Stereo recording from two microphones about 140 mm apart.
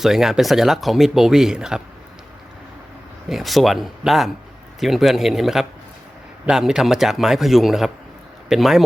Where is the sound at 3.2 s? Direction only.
Centre (ahead or behind).